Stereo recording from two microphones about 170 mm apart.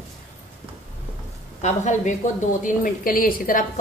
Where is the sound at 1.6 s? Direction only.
45° left (ahead or behind).